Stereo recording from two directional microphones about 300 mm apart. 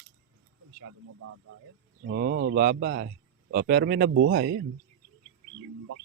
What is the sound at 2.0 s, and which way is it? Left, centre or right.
Speech, right.